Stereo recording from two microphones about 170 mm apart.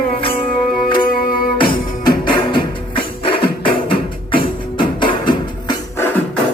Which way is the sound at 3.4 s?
60° left (ahead or behind).